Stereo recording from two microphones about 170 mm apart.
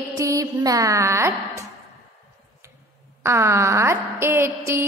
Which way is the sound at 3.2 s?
15° right (ahead or behind).